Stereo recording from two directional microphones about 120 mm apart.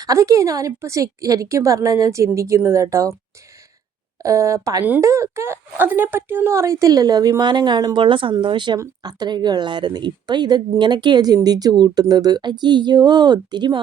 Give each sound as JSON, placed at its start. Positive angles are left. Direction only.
{"t": 0.0, "sound": "a woman's voice", "side_deg": -30}
{"t": 4.2, "sound": "a woman's voice", "side_deg": -25}